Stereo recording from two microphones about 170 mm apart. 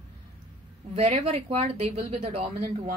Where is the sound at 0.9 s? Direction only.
40° right (ahead or behind).